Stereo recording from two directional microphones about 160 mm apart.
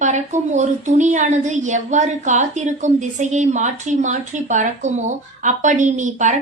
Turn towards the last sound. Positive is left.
turn(degrees=-50)  # may be behind; listen again after turning